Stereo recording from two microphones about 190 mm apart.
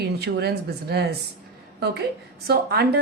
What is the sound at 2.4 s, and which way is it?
Speech, 55° right (ahead or behind).